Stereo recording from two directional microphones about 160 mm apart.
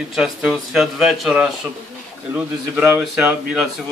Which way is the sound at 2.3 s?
10° right (ahead or behind).